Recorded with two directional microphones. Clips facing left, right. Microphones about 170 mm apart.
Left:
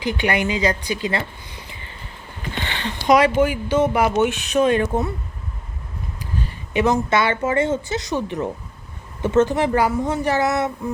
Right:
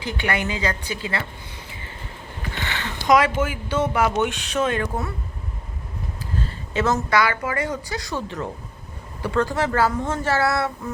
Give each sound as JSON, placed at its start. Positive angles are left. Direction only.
{"t": 0.0, "sound": "speech", "side_deg": 15}
{"t": 2.6, "sound": "speech", "side_deg": 25}
{"t": 6.4, "sound": "speech", "side_deg": 15}